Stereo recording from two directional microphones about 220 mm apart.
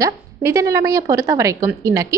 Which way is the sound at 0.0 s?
15° right (ahead or behind).